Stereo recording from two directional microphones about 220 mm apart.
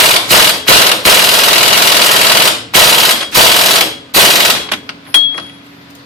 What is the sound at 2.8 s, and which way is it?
Machine gun, centre (ahead or behind).